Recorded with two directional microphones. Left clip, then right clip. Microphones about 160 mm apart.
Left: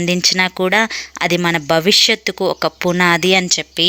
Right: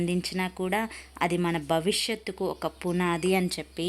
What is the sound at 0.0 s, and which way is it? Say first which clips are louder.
A woman's voice: left 15 dB; 25° left (ahead or behind).